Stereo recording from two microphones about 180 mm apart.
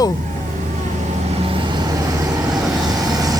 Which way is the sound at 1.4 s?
25° right (ahead or behind).